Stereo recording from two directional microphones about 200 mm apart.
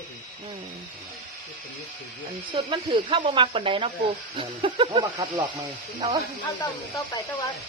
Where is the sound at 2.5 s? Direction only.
25° right (ahead or behind).